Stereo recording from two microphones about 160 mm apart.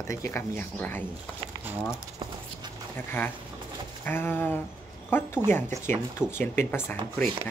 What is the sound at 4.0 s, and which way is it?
Speech, 15° left (ahead or behind).